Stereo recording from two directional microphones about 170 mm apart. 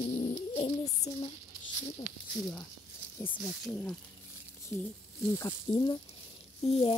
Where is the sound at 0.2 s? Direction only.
30° left (ahead or behind).